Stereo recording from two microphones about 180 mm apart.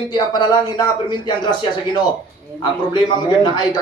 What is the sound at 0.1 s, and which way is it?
A man's voice, 25° left (ahead or behind).